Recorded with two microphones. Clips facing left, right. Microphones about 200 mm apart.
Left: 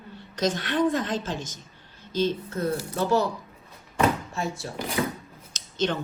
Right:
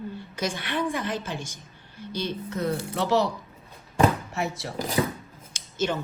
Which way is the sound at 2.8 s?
75° right (ahead or behind).